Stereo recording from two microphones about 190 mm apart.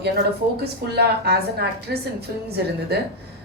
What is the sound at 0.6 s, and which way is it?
A woman's voice, 55° right (ahead or behind).